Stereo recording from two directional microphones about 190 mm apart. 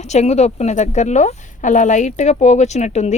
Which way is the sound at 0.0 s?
35° left (ahead or behind).